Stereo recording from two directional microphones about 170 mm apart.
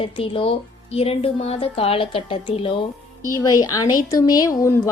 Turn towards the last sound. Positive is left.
turn(degrees=20)  # may be behind; listen again after turning